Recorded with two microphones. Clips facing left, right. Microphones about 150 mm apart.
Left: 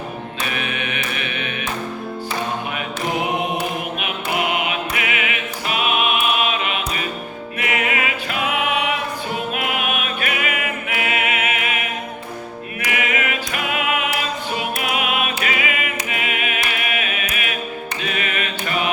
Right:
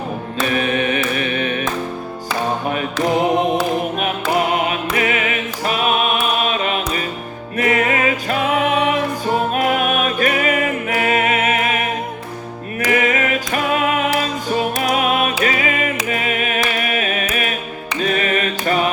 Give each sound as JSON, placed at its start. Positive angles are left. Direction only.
{"t": 0.4, "sound": "music", "side_deg": -40}
{"t": 4.0, "sound": "music", "side_deg": -40}
{"t": 16.0, "sound": "carnatic music", "side_deg": -40}
{"t": 18.0, "sound": "mantra", "side_deg": -40}